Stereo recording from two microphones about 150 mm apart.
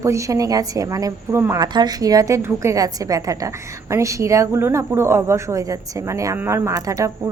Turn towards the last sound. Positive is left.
turn(degrees=-20)  # may be behind; listen again after turning